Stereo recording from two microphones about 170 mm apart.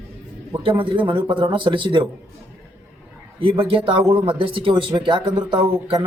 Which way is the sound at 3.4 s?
35° right (ahead or behind).